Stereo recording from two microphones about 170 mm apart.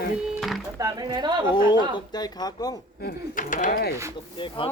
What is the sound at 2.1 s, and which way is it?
Speech, 25° left (ahead or behind).